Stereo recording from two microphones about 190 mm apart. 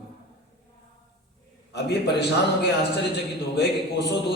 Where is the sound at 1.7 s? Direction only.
60° left (ahead or behind).